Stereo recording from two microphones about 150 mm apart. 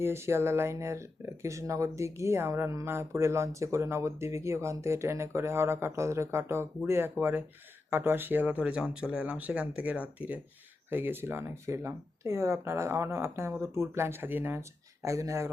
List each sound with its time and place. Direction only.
0.0 s speech: 15° right (ahead or behind)